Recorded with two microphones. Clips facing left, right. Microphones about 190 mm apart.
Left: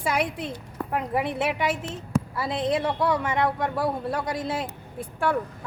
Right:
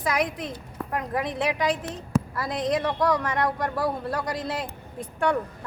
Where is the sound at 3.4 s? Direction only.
Centre (ahead or behind).